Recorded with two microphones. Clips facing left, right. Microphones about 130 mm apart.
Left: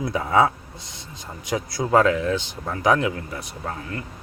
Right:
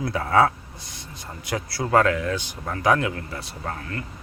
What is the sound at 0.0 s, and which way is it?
Speech, 15° left (ahead or behind).